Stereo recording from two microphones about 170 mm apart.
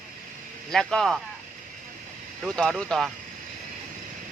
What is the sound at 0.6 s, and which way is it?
Speech, 5° left (ahead or behind).